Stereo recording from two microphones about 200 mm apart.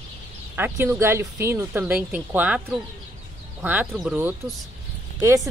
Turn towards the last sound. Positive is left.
turn(degrees=-15)  # may be behind; listen again after turning